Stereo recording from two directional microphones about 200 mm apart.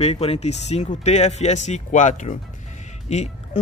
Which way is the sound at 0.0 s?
30° left (ahead or behind).